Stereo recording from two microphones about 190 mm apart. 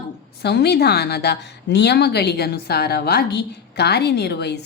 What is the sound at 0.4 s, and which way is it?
A woman's voice, 60° left (ahead or behind).